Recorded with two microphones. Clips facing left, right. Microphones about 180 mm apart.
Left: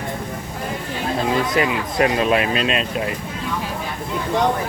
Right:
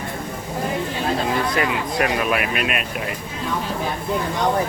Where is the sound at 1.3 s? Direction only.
25° left (ahead or behind).